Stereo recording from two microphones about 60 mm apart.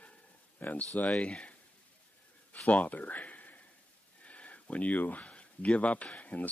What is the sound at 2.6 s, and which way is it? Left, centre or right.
Speech, left.